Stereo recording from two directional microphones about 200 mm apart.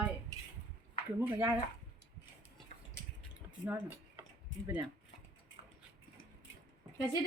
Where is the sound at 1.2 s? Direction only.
10° right (ahead or behind).